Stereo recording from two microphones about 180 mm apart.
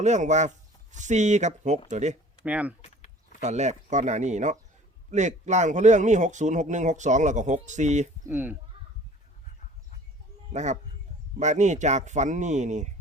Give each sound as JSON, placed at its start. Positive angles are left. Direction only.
{"t": 0.0, "sound": "a man's voice", "side_deg": -40}
{"t": 2.4, "sound": "speech", "side_deg": -10}
{"t": 3.4, "sound": "a man's voice", "side_deg": -40}
{"t": 8.3, "sound": "speech", "side_deg": -10}
{"t": 8.7, "sound": "a sound", "side_deg": -30}
{"t": 10.5, "sound": "a man's voice", "side_deg": -40}